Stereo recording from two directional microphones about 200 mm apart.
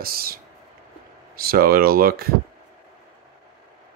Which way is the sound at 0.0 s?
50° right (ahead or behind).